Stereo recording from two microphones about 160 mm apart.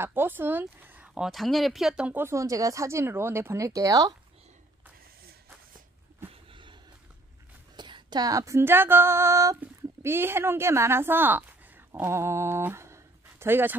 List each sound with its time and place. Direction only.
0.0 s speech: 15° right (ahead or behind)
6.2 s a sound: 30° right (ahead or behind)
7.7 s female singing: 30° right (ahead or behind)